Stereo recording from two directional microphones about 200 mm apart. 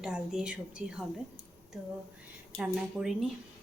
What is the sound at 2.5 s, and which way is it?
Speech, centre (ahead or behind).